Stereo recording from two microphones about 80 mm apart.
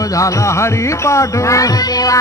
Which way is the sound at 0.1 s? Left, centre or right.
Left.